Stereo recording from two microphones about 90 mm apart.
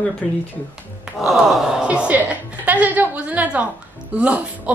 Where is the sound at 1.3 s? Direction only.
Centre (ahead or behind).